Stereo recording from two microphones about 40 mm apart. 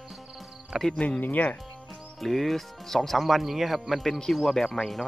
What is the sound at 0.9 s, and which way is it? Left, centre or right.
Speech, left.